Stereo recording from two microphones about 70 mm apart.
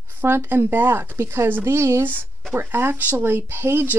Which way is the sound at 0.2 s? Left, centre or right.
Right.